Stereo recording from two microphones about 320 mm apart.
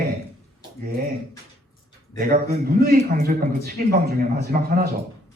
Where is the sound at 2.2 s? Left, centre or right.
Right.